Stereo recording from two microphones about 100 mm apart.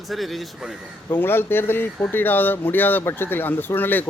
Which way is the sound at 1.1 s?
20° left (ahead or behind).